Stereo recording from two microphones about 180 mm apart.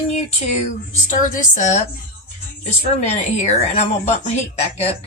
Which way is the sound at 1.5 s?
40° left (ahead or behind).